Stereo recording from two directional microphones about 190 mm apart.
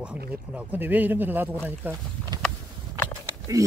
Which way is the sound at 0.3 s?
5° right (ahead or behind).